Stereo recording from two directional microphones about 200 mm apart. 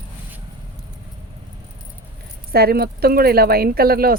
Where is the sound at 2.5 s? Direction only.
50° right (ahead or behind).